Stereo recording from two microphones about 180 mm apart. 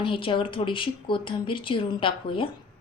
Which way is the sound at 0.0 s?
30° left (ahead or behind).